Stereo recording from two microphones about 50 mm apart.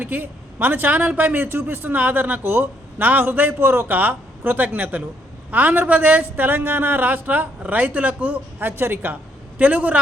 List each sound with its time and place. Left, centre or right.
0.0 s speech: right
8.6 s speech: right
9.6 s a man's voice: right